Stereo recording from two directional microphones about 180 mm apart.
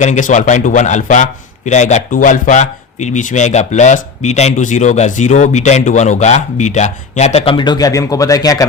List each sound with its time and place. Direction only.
0.0 s a man's voice: 40° left (ahead or behind); by 8.6 s 20° left (ahead or behind)